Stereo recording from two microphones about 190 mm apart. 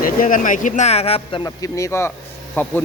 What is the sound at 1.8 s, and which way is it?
Speech, 15° left (ahead or behind).